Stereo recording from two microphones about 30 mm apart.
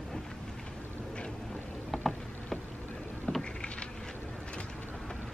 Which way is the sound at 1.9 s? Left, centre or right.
Centre.